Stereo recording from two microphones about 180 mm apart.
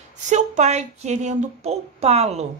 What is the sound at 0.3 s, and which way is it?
A woman's voice, 40° right (ahead or behind).